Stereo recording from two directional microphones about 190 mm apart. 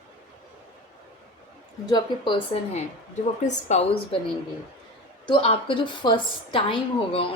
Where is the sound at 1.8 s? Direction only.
20° left (ahead or behind).